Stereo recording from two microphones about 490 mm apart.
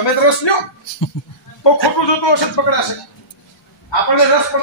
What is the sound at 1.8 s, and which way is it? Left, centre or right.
Speech, left.